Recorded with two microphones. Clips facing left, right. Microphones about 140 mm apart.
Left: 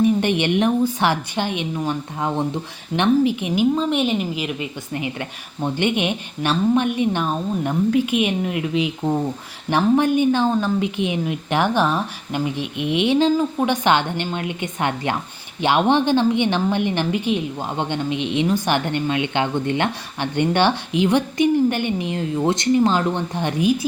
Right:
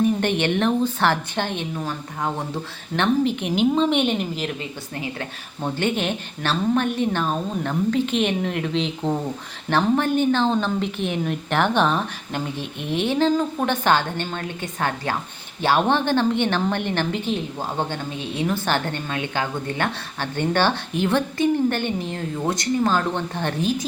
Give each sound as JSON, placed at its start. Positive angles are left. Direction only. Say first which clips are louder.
{"t": 0.3, "sound": "a woman's voice", "louder": "left 2 dB", "side_deg": 15}
{"t": 2.9, "sound": "a woman's voice", "louder": "left 3 dB", "side_deg": 15}
{"t": 3.4, "sound": "a woman's voice", "louder": "even", "side_deg": 5}
{"t": 6.0, "sound": "a woman's voice", "louder": "left 3 dB", "side_deg": 15}